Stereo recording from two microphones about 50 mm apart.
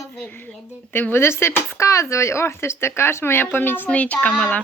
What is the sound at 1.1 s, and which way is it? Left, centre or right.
Speech, left.